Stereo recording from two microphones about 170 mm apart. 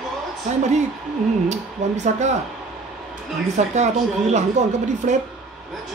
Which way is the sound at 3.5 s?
40° right (ahead or behind).